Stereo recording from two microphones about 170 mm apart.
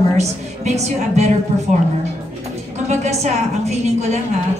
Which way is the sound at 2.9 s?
40° right (ahead or behind).